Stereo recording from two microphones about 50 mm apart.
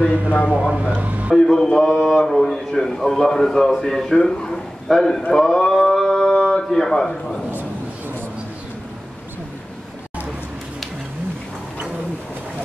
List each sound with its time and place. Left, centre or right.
0.5 s speech: right
1.3 s a man's voice: centre
5.3 s a sound: centre